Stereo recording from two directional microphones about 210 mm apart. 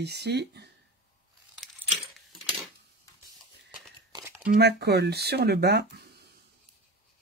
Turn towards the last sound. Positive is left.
turn(degrees=-50)  # may be behind; listen again after turning